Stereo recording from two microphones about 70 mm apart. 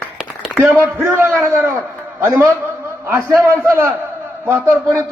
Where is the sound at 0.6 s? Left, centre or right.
Right.